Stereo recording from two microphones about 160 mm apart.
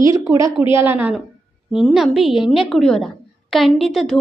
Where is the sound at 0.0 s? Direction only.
20° right (ahead or behind).